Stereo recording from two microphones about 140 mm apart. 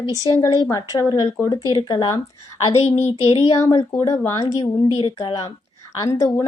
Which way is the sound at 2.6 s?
45° left (ahead or behind).